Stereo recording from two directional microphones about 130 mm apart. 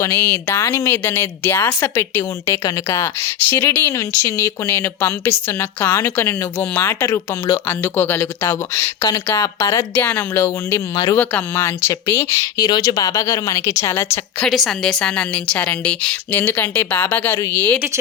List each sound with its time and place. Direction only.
0.0 s speech: 20° left (ahead or behind)
10.9 s speech: 30° left (ahead or behind)
11.2 s speech: 10° left (ahead or behind)
14.4 s speech: centre (ahead or behind)